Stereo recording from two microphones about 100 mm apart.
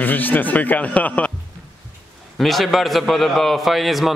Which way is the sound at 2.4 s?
Centre (ahead or behind).